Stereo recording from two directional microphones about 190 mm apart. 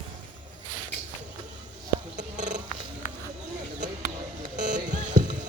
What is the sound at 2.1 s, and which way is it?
Purr, 40° right (ahead or behind).